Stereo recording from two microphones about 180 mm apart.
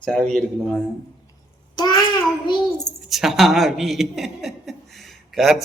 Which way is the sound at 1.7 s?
25° left (ahead or behind).